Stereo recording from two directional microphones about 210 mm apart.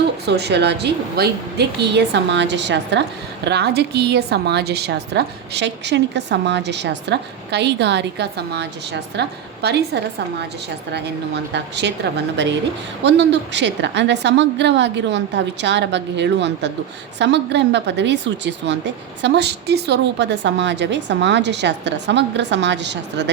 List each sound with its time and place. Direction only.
0.3 s a woman's voice: 55° right (ahead or behind)